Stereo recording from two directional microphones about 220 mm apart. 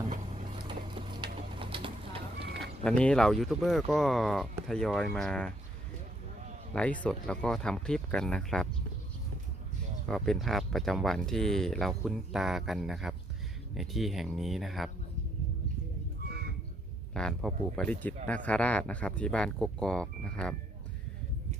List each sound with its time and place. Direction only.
0.5 s a sound: 20° right (ahead or behind)
2.6 s speech: 5° left (ahead or behind)
6.7 s speech: 5° left (ahead or behind)
10.1 s speech: centre (ahead or behind)
17.2 s speech: 5° left (ahead or behind)